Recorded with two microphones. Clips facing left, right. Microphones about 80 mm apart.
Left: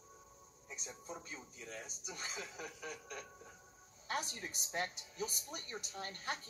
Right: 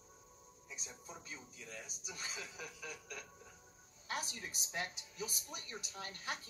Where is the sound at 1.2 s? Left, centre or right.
Left.